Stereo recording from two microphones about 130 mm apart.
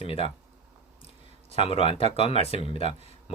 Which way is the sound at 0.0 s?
45° left (ahead or behind).